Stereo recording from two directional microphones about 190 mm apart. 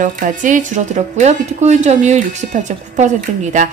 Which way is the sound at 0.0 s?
40° right (ahead or behind).